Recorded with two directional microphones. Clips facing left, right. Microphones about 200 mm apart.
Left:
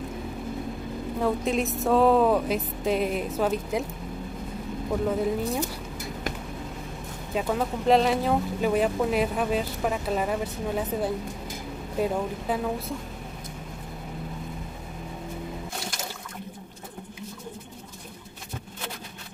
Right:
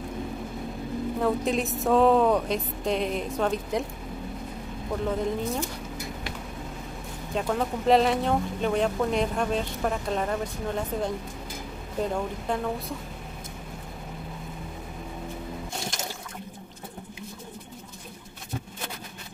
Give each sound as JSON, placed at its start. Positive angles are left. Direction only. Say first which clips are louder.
{"t": 1.2, "sound": "speech", "louder": "left 1 dB", "side_deg": 0}
{"t": 5.0, "sound": "speech", "louder": "left 2 dB", "side_deg": 5}
{"t": 7.3, "sound": "speech", "louder": "left 1 dB", "side_deg": 0}